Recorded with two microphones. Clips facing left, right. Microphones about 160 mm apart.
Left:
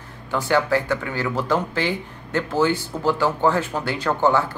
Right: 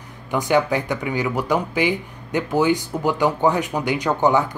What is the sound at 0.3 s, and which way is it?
Speech, 15° right (ahead or behind).